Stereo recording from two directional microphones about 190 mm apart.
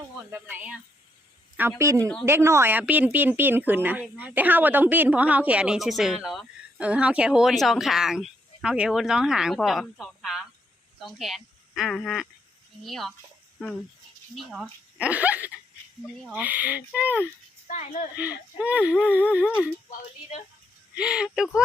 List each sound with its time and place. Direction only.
0.3 s speech: 10° right (ahead or behind)
1.8 s a woman's voice: 15° right (ahead or behind); by 13.1 s centre (ahead or behind)
14.3 s speech: centre (ahead or behind)
17.7 s a woman's voice: 40° left (ahead or behind)
18.2 s speech: 5° right (ahead or behind)
20.9 s speech: 5° right (ahead or behind)